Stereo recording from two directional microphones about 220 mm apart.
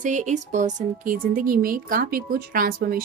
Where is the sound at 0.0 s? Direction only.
35° right (ahead or behind).